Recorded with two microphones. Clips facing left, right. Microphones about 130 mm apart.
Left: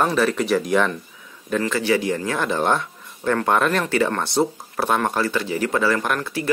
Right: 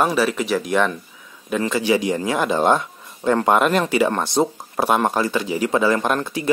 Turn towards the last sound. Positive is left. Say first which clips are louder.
# right 2 dB
turn(degrees=-20)  # may be behind; listen again after turning